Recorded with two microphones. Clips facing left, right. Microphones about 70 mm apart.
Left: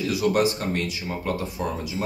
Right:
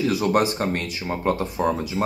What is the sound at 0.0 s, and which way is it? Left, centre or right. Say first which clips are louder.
Speech: right 1 dB; right.